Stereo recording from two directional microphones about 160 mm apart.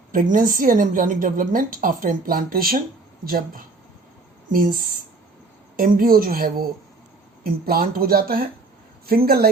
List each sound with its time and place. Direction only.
0.1 s a woman's voice: 60° right (ahead or behind)